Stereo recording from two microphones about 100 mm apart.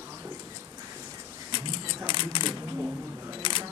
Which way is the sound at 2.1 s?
55° left (ahead or behind).